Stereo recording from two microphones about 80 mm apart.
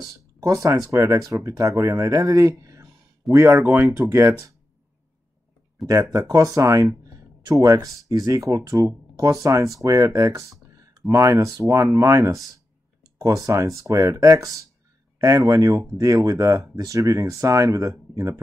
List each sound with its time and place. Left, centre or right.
0.0 s speech: right
5.8 s speech: centre
6.1 s speech: right